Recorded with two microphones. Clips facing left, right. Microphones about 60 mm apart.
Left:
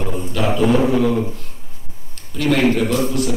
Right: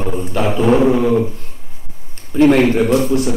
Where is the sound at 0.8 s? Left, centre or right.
Right.